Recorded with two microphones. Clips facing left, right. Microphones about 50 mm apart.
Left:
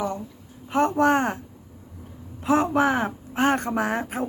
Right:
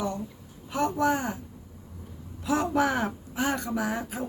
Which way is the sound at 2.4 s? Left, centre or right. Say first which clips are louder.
Left 5 dB; left.